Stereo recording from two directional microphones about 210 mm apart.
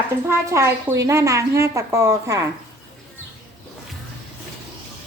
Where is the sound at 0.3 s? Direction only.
15° right (ahead or behind).